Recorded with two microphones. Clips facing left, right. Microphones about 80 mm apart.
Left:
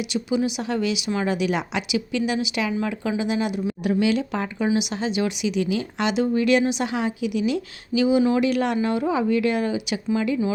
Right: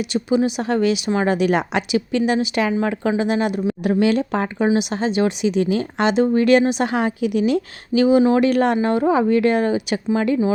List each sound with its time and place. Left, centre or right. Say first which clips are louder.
0.1 s speech: right 5 dB; right